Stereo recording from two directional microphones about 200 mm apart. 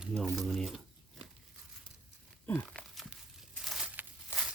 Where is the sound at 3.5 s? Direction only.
Centre (ahead or behind).